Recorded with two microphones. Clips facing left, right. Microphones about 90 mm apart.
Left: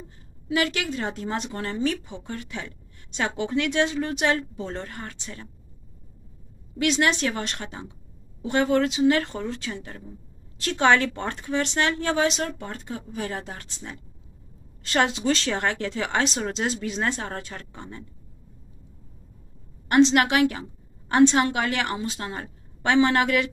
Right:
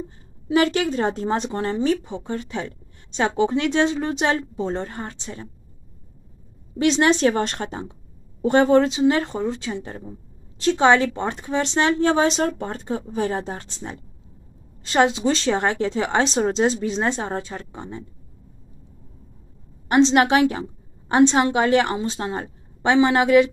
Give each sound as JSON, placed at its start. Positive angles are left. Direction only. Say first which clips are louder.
{"t": 0.5, "sound": "speech", "louder": "right 6 dB", "side_deg": -35}
{"t": 6.8, "sound": "speech", "louder": "right 6 dB", "side_deg": -30}
{"t": 19.9, "sound": "speech", "louder": "right 3 dB", "side_deg": -25}